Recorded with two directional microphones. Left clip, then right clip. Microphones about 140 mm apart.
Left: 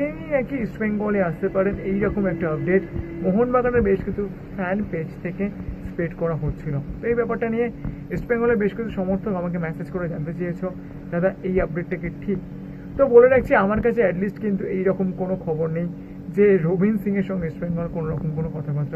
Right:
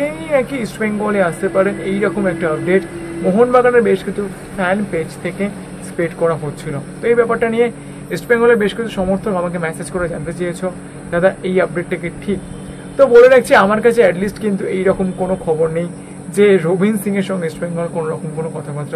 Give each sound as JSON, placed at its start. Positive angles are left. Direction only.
{"t": 0.0, "sound": "speech", "side_deg": -35}